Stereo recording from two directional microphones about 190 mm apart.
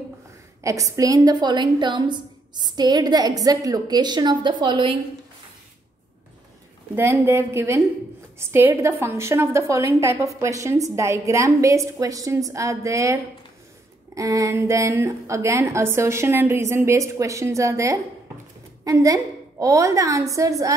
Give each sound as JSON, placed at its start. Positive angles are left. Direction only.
{"t": 0.7, "sound": "a woman's voice", "side_deg": -15}
{"t": 7.0, "sound": "a woman's voice", "side_deg": -10}